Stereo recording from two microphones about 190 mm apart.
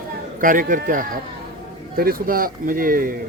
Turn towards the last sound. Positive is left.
turn(degrees=-50)  # may be behind; listen again after turning